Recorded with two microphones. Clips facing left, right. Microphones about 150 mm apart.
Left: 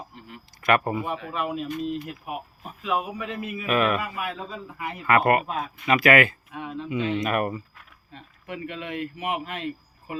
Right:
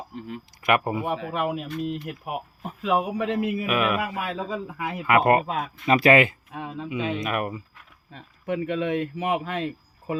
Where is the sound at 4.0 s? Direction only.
90° right.